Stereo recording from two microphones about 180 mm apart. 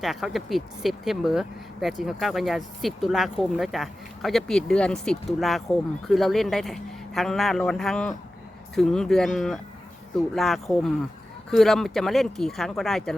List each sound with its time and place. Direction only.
0.0 s speech: centre (ahead or behind)